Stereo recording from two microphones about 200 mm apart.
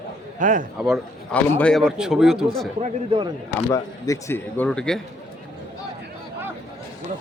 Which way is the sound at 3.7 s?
15° left (ahead or behind).